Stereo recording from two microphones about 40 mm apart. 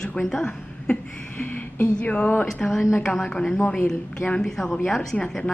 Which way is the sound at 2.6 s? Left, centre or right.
Left.